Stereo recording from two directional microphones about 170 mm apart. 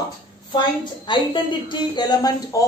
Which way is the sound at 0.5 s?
25° left (ahead or behind).